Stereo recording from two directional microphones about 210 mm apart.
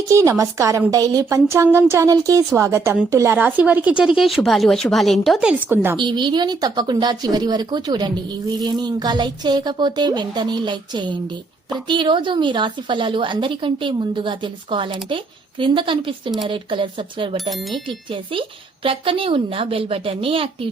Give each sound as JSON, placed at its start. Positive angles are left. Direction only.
{"t": 0.1, "sound": "a woman's voice", "side_deg": -15}
{"t": 6.0, "sound": "speech", "side_deg": -20}
{"t": 17.5, "sound": "speech", "side_deg": 0}
{"t": 17.8, "sound": "speech", "side_deg": -25}